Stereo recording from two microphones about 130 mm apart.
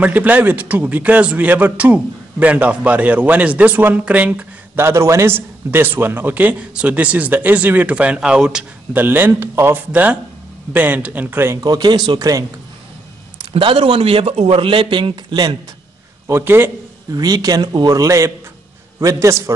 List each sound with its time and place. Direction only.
0.0 s speech: 10° right (ahead or behind)
11.6 s speech: 35° right (ahead or behind)
13.5 s a man's voice: 40° right (ahead or behind)
16.3 s speech: 20° right (ahead or behind)
17.1 s a man's voice: 30° right (ahead or behind)